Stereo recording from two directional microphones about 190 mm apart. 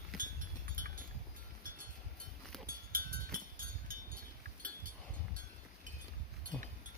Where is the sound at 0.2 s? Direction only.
45° right (ahead or behind).